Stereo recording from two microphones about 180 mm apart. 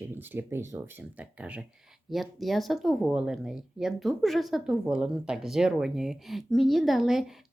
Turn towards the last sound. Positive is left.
turn(degrees=0)  # may be behind; listen again after turning